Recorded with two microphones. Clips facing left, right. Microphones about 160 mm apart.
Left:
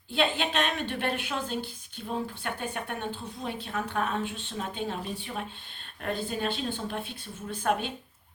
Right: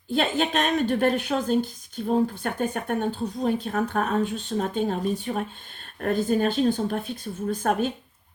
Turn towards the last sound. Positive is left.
turn(degrees=-40)  # may be behind; listen again after turning